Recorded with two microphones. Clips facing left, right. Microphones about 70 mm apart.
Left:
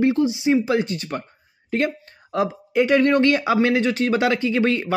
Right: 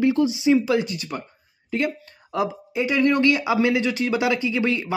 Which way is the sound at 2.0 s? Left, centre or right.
Left.